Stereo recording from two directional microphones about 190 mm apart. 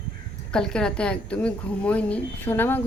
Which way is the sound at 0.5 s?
5° left (ahead or behind).